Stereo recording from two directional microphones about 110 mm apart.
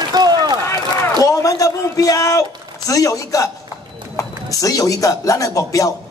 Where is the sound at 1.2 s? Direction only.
30° left (ahead or behind).